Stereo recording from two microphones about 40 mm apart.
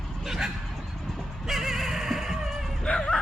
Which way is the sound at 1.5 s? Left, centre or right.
Centre.